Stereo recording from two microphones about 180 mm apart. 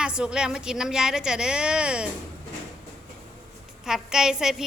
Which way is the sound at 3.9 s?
5° right (ahead or behind).